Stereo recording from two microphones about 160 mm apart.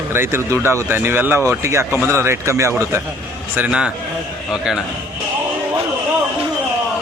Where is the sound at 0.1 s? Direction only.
15° right (ahead or behind).